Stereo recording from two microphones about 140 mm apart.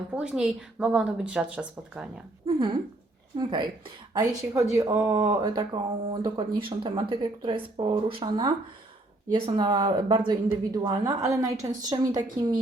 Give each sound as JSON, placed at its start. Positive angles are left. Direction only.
{"t": 0.1, "sound": "a woman's voice", "side_deg": -5}
{"t": 2.5, "sound": "speech", "side_deg": -35}
{"t": 5.3, "sound": "speech", "side_deg": -30}